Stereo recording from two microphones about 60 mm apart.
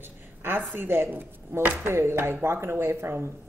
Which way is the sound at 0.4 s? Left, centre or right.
Right.